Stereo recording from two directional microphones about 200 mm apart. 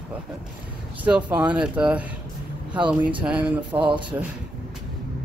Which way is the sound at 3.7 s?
25° right (ahead or behind).